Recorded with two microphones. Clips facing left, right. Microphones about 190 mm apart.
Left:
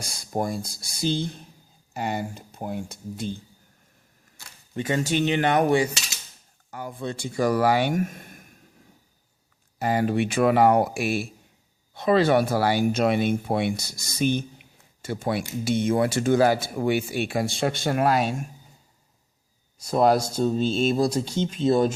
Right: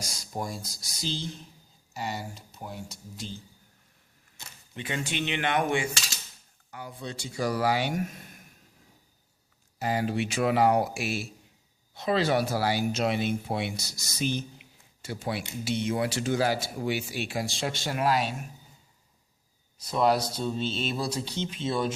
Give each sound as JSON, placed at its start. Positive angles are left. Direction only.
{"t": 0.0, "sound": "speech", "side_deg": 55}
{"t": 4.4, "sound": "camera", "side_deg": -20}
{"t": 4.7, "sound": "speech", "side_deg": 40}
{"t": 9.7, "sound": "speech", "side_deg": 55}
{"t": 19.8, "sound": "speech", "side_deg": 45}